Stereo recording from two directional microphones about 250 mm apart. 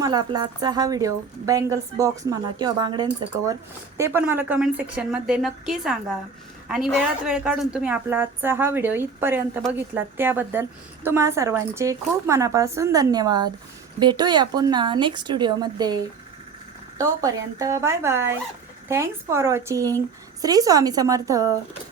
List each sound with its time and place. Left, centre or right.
0.0 s a woman's voice: centre
17.0 s a woman's voice: centre